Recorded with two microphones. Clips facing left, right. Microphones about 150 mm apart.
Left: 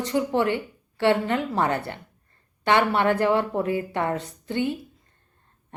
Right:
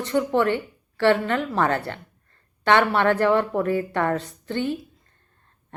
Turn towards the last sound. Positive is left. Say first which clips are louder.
# even
turn(degrees=15)  # may be behind; listen again after turning